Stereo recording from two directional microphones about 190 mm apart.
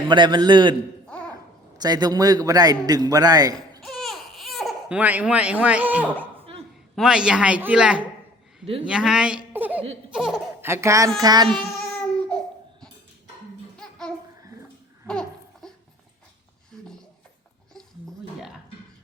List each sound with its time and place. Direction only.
0.1 s a man's voice: 25° right (ahead or behind)
1.0 s a sound: 5° left (ahead or behind)
1.8 s a man's voice: 20° right (ahead or behind)
3.8 s baby cry: centre (ahead or behind)
6.9 s speech: 5° right (ahead or behind)
8.6 s a man's voice: 30° right (ahead or behind)
8.9 s speech: 5° right (ahead or behind)
9.5 s chuckle: 10° right (ahead or behind)
10.2 s a man's voice: 5° right (ahead or behind); by 11.4 s 20° right (ahead or behind)
11.9 s babbling: 5° left (ahead or behind)
15.0 s babbling: 5° left (ahead or behind)